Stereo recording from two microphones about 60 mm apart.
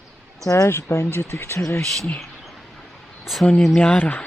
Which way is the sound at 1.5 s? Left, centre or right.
Left.